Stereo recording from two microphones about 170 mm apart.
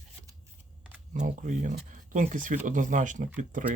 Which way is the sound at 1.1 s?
45° right (ahead or behind).